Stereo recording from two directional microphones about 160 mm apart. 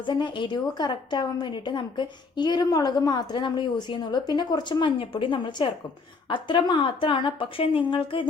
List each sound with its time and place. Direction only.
0.0 s a woman's voice: 30° left (ahead or behind)